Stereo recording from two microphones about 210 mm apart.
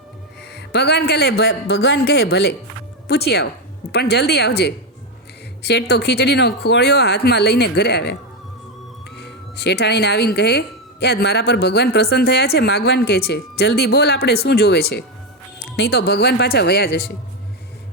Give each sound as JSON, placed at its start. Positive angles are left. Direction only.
{"t": 0.5, "sound": "speech", "side_deg": 55}
{"t": 9.1, "sound": "speech", "side_deg": 50}